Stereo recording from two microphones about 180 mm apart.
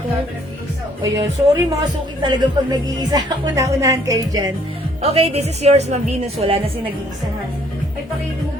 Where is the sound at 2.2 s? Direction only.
25° right (ahead or behind).